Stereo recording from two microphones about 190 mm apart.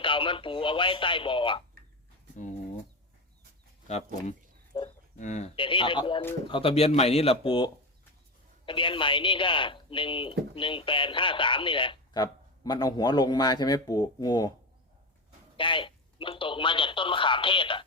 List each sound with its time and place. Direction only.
0.0 s speech: 25° left (ahead or behind)
4.7 s livestock: 25° left (ahead or behind)
5.1 s speech: 40° left (ahead or behind)
5.5 s speech: 25° left (ahead or behind)
15.5 s speech: 25° left (ahead or behind)